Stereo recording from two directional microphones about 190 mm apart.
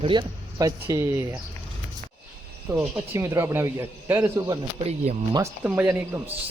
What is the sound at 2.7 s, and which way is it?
A man's voice, 15° right (ahead or behind).